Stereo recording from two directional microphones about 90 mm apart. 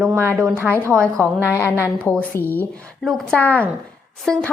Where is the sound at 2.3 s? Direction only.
20° left (ahead or behind).